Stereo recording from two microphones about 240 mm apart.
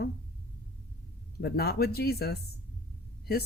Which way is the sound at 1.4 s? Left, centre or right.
Left.